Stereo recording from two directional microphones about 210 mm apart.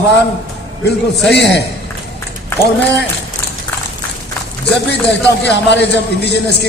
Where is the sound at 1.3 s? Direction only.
55° left (ahead or behind).